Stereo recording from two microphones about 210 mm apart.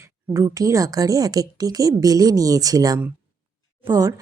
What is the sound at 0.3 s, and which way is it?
Speech, 15° right (ahead or behind).